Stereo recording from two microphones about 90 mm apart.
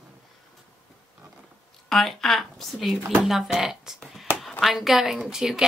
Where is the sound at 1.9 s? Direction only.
5° left (ahead or behind).